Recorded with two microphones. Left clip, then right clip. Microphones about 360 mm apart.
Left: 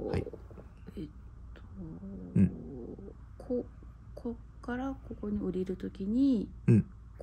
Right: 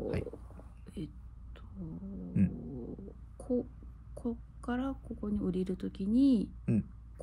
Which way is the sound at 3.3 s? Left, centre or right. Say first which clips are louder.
Even; right.